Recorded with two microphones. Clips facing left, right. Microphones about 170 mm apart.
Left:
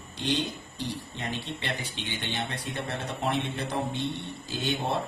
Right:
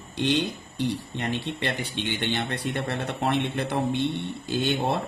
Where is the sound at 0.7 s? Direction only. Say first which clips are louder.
Right 7 dB; 65° right (ahead or behind).